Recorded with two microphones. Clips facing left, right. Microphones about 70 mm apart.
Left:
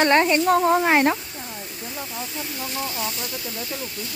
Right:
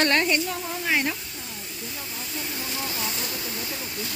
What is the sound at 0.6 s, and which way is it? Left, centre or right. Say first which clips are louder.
Speech: left 14 dB; left.